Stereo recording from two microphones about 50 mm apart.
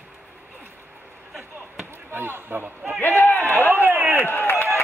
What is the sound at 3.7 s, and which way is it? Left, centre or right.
Run, right.